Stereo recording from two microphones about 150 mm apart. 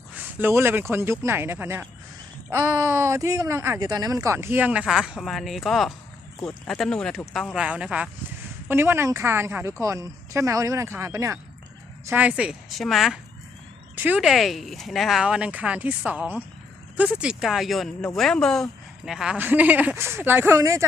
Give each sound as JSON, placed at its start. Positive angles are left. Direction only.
{"t": 0.2, "sound": "a woman's voice", "side_deg": -15}
{"t": 13.9, "sound": "speech", "side_deg": -10}